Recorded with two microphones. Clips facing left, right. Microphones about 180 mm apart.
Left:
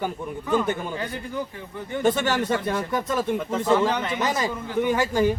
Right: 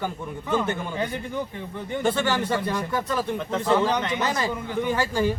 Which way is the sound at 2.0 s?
20° left (ahead or behind).